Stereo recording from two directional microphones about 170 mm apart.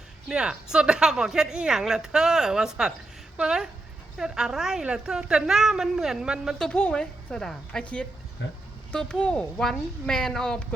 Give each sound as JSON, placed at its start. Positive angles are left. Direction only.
{"t": 0.3, "sound": "a woman's voice", "side_deg": -5}
{"t": 8.4, "sound": "speech", "side_deg": 90}
{"t": 8.9, "sound": "a woman's voice", "side_deg": 5}